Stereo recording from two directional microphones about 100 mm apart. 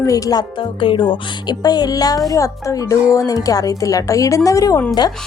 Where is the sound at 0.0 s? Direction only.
35° left (ahead or behind).